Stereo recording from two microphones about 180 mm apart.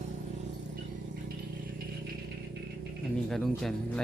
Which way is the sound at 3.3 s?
Centre (ahead or behind).